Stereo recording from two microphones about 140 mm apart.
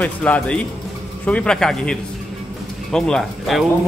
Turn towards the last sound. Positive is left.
turn(degrees=0)  # may be behind; listen again after turning